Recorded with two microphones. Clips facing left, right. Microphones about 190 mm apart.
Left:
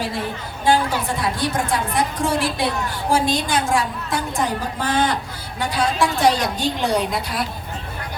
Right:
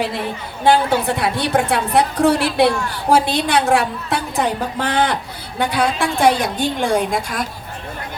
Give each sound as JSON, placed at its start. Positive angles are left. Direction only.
{"t": 0.6, "sound": "a woman's voice", "side_deg": -65}